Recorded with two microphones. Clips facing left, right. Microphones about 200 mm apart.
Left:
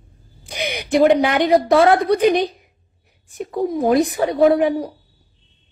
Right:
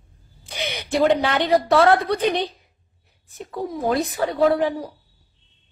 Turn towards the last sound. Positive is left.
turn(degrees=15)  # may be behind; listen again after turning